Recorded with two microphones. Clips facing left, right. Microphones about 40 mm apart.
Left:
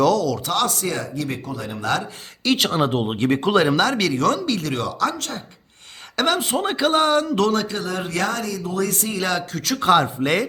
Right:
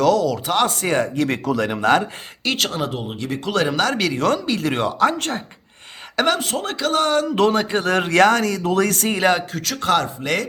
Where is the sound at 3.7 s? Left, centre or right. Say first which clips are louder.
Left 1 dB; centre.